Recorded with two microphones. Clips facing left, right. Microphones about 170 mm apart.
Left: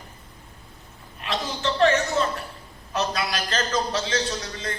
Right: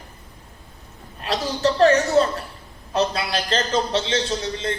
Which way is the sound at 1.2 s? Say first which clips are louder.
Right 6 dB; 40° right (ahead or behind).